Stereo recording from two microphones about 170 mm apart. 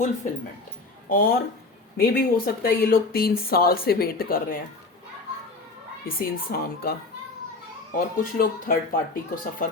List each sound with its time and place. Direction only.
1.1 s speech: 55° left (ahead or behind)
6.1 s speech: 60° left (ahead or behind)
7.9 s speech: 55° left (ahead or behind)